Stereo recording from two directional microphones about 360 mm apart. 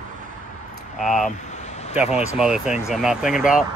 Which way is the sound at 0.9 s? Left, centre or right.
Centre.